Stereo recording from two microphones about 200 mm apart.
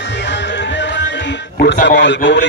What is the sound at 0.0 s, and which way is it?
Music, 60° left (ahead or behind).